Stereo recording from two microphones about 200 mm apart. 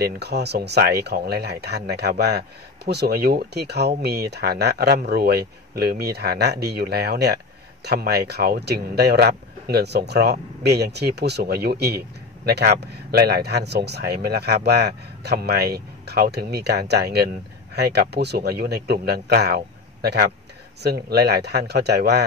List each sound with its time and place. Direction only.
0.0 s speech: 55° right (ahead or behind)